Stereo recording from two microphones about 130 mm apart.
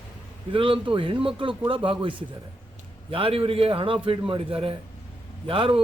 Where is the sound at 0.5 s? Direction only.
40° right (ahead or behind).